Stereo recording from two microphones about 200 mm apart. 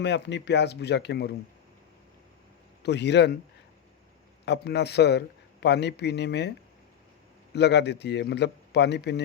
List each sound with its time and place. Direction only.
0.0 s speech: 60° left (ahead or behind)
2.8 s speech: 60° left (ahead or behind)
4.4 s speech: 55° left (ahead or behind)
7.5 s speech: 60° left (ahead or behind)